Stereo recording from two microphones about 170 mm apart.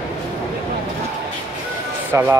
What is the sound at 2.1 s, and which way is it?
Speech, 15° right (ahead or behind).